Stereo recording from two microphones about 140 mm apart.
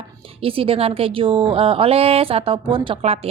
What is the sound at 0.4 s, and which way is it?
A woman's voice, 40° right (ahead or behind).